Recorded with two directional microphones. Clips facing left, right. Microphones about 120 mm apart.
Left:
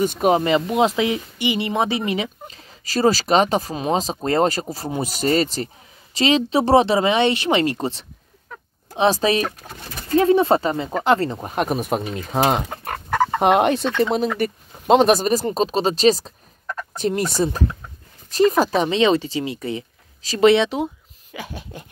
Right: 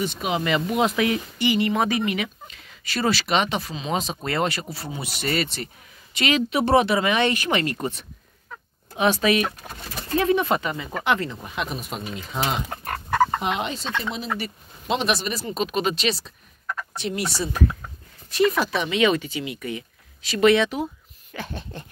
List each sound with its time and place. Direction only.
0.0 s speech: 45° left (ahead or behind)
0.4 s speech: 30° left (ahead or behind); by 3.9 s 45° left (ahead or behind)
3.9 s speech: 35° left (ahead or behind)
21.3 s a sound: 10° left (ahead or behind)